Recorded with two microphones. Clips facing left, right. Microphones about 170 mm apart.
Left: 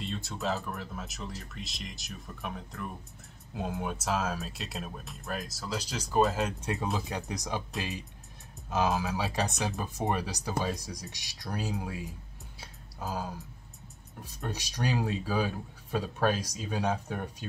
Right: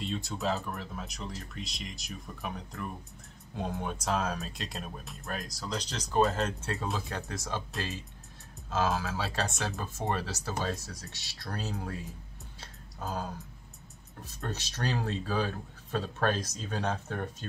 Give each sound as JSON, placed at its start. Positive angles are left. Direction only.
{"t": 0.0, "sound": "speech", "side_deg": 0}
{"t": 8.6, "sound": "speech", "side_deg": 15}
{"t": 12.5, "sound": "a sound", "side_deg": 10}
{"t": 14.2, "sound": "speech", "side_deg": 10}